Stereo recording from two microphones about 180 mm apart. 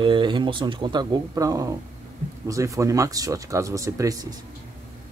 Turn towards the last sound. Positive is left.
turn(degrees=-20)  # may be behind; listen again after turning